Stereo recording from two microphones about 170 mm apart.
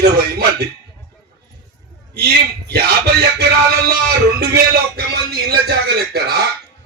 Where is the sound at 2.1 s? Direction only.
65° right (ahead or behind).